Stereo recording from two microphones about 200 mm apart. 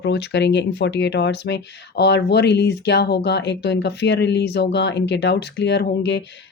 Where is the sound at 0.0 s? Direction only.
55° left (ahead or behind).